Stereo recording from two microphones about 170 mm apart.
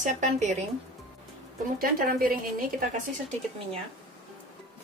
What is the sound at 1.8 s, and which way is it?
Speech, 60° right (ahead or behind).